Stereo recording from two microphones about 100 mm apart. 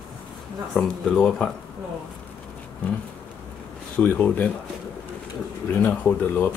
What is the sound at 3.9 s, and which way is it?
Speech, 15° left (ahead or behind).